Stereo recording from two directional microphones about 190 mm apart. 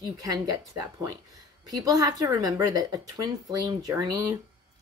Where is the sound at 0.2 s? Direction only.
20° right (ahead or behind).